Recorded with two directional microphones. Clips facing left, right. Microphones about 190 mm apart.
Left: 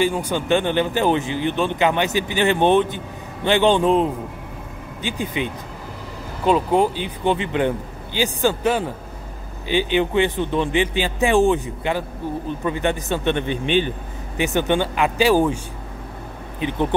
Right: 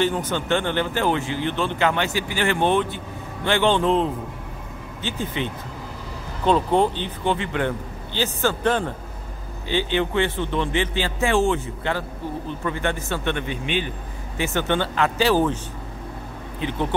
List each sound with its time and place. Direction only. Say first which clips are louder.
0.0 s a man's voice: left 2 dB; 10° left (ahead or behind); by 13.8 s 30° left (ahead or behind)
14.3 s speech: left 3 dB; 15° left (ahead or behind)